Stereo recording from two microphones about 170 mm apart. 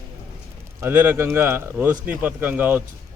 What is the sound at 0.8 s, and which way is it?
A man's voice, 10° right (ahead or behind).